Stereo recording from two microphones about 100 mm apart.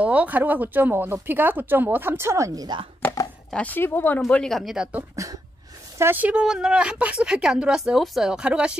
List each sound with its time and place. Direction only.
0.0 s speech: 15° right (ahead or behind); by 2.8 s 40° right (ahead or behind)
3.4 s speech: 15° left (ahead or behind)
4.3 s speech: 5° left (ahead or behind)
5.1 s speech: 35° right (ahead or behind)
5.9 s a woman's voice: 20° right (ahead or behind)